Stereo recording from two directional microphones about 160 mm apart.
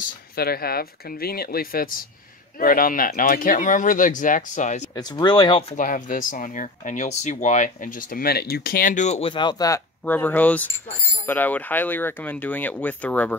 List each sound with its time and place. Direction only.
0.4 s speech: 70° left (ahead or behind); by 4.8 s 50° left (ahead or behind)
4.9 s speech: 25° left (ahead or behind)
10.0 s speech: 10° left (ahead or behind)